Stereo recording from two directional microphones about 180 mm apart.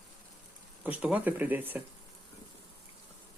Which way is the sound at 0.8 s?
5° right (ahead or behind).